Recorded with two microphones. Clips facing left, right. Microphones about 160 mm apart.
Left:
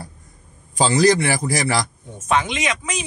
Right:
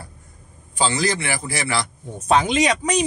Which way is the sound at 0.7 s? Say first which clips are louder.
Left 6 dB; 40° left (ahead or behind).